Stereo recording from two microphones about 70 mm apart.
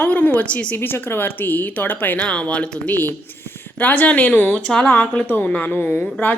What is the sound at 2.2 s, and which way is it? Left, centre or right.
A woman's voice, centre.